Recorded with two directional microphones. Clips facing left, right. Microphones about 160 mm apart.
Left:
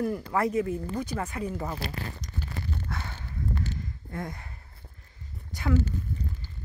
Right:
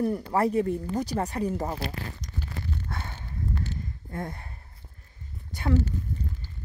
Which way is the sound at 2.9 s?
25° right (ahead or behind).